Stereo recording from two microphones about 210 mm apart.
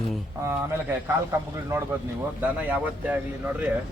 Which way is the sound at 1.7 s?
15° right (ahead or behind).